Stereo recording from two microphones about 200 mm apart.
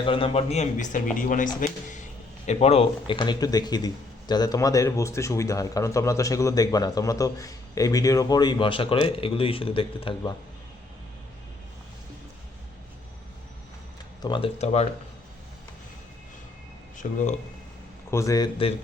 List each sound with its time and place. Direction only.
0.0 s a man's voice: 25° left (ahead or behind)
14.2 s speech: 25° left (ahead or behind)
17.0 s speech: 40° left (ahead or behind)
18.1 s a man's voice: 15° left (ahead or behind)